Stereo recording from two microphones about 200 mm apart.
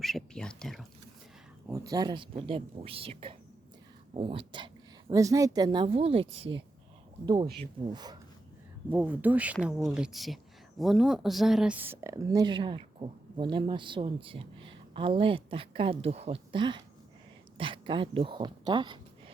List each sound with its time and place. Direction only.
0.0 s speech: 5° left (ahead or behind)
1.6 s a woman's voice: 15° right (ahead or behind)
6.3 s speech: 65° right (ahead or behind)
7.6 s speech: 20° right (ahead or behind)
8.9 s speech: 10° right (ahead or behind)